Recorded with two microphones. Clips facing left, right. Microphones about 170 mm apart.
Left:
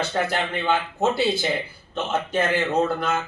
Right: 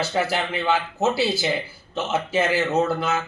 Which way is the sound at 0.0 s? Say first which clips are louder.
Right 1 dB; 5° right (ahead or behind).